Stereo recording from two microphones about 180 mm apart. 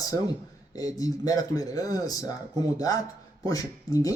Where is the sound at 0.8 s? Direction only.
20° left (ahead or behind).